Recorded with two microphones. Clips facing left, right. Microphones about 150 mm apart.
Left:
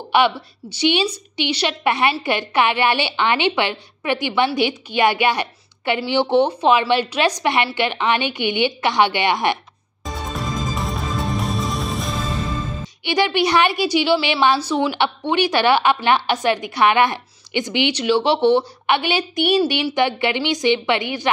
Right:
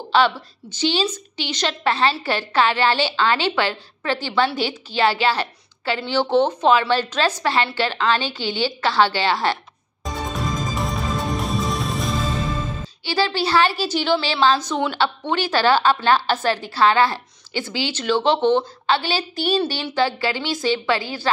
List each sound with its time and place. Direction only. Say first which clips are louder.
0.1 s a woman's voice: left 1 dB; 15° left (ahead or behind)
10.1 s music: right 1 dB; centre (ahead or behind)
13.0 s a woman's voice: left 3 dB; 20° left (ahead or behind)